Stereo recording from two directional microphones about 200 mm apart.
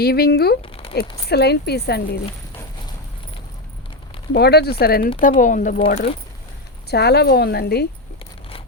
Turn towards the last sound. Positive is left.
turn(degrees=55)  # may be behind; listen again after turning